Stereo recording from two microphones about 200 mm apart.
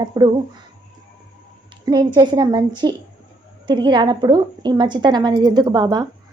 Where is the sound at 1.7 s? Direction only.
20° right (ahead or behind).